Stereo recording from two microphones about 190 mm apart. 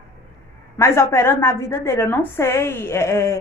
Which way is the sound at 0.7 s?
15° left (ahead or behind).